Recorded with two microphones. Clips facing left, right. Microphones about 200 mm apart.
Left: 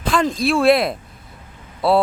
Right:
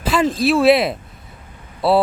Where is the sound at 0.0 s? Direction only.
5° right (ahead or behind).